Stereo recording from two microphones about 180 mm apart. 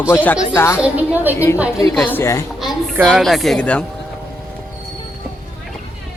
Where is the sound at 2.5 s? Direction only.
Centre (ahead or behind).